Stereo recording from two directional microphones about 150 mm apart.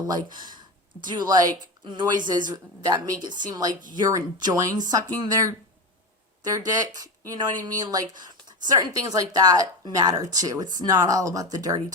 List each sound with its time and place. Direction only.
0.1 s speech: 25° right (ahead or behind)
6.7 s speech: 25° right (ahead or behind)